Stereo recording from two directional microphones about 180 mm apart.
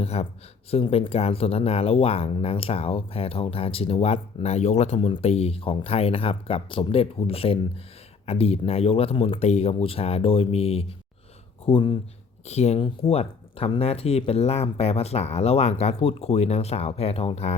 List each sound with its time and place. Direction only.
0.0 s speech: 35° left (ahead or behind)